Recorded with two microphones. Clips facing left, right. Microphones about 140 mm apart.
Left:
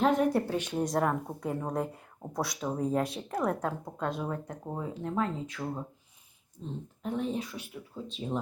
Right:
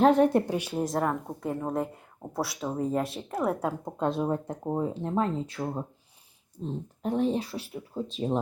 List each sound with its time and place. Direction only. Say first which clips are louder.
0.0 s a woman's voice: right 5 dB; 30° right (ahead or behind); by 3.8 s 10° right (ahead or behind)
3.8 s speech: right 6 dB; 25° right (ahead or behind)